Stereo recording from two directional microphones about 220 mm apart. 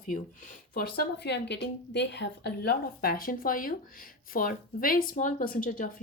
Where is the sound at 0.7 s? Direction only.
50° left (ahead or behind).